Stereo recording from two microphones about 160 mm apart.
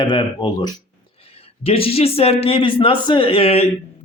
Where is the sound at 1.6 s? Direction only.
35° left (ahead or behind).